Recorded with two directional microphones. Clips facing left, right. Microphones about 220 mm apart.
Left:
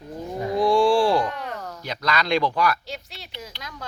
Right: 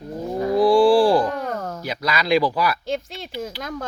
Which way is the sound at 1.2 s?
45° right (ahead or behind).